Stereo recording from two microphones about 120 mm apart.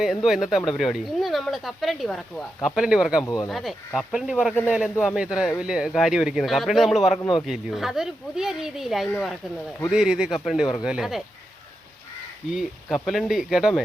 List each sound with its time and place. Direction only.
0.0 s speech: centre (ahead or behind)
2.7 s speech: 5° right (ahead or behind)
3.2 s speech: 30° left (ahead or behind)
3.5 s speech: centre (ahead or behind)
12.5 s speech: centre (ahead or behind)